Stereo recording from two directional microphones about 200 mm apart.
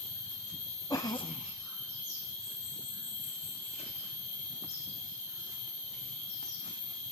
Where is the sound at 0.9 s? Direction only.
20° left (ahead or behind).